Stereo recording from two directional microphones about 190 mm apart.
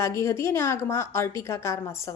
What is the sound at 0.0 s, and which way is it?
A woman's voice, 15° left (ahead or behind).